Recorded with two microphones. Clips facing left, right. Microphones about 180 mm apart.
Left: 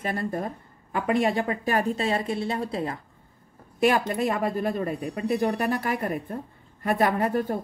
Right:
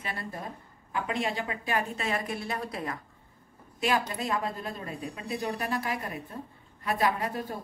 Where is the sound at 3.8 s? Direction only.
55° left (ahead or behind).